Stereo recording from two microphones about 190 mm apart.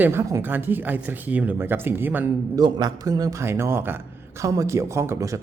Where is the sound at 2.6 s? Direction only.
20° right (ahead or behind).